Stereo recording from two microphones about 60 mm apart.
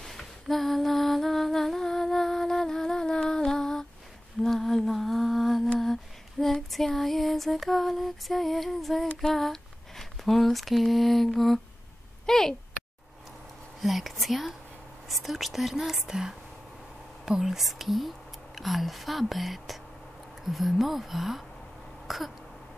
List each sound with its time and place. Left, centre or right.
0.0 s humming: centre
6.4 s lullaby: centre
9.2 s speech: centre
13.7 s speech: centre
22.0 s throat clearing: centre